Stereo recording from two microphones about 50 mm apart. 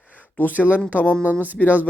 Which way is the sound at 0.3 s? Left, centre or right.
Left.